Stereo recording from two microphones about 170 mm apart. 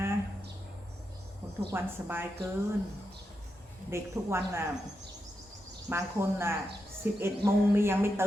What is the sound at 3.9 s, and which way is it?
Speech, 15° right (ahead or behind).